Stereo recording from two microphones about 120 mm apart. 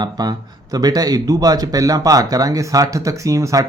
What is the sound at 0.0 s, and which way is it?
Speech, 35° right (ahead or behind).